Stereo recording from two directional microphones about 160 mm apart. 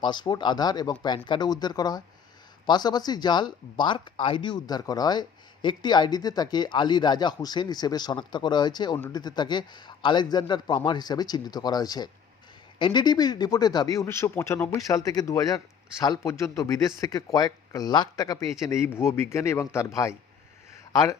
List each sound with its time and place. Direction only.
0.0 s speech: 30° left (ahead or behind)
20.9 s speech: 20° left (ahead or behind)